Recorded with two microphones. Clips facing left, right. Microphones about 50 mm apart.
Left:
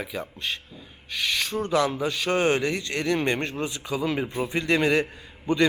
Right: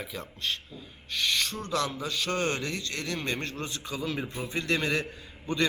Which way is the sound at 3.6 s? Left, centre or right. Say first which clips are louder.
Left 6 dB; centre.